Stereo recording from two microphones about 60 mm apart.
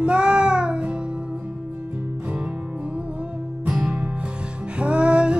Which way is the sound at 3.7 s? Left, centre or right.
Centre.